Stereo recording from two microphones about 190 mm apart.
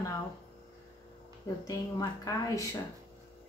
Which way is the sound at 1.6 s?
20° left (ahead or behind).